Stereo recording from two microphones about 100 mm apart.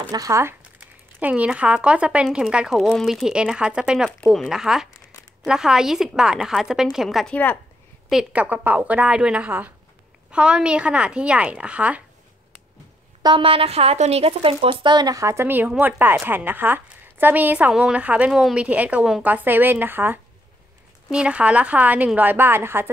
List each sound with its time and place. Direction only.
0.1 s speech: 35° right (ahead or behind)
0.4 s a woman's voice: 20° right (ahead or behind)
13.4 s speech: 70° right (ahead or behind)
14.7 s a woman's voice: 50° right (ahead or behind); by 22.8 s 25° right (ahead or behind)